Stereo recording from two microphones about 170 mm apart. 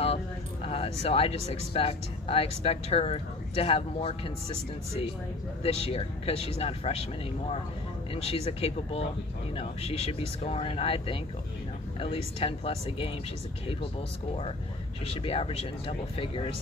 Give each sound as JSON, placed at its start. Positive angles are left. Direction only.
{"t": 0.7, "sound": "speech", "side_deg": 35}
{"t": 5.6, "sound": "speech", "side_deg": 35}
{"t": 8.1, "sound": "speech", "side_deg": 35}
{"t": 15.0, "sound": "speech", "side_deg": 35}